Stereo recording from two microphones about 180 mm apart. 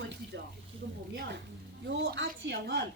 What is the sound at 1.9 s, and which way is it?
Speech, 70° right (ahead or behind).